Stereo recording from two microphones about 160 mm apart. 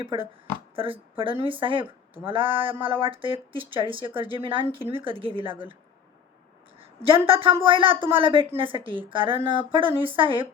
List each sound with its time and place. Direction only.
0.8 s a woman's voice: 35° right (ahead or behind)
6.7 s a woman's voice: 35° right (ahead or behind)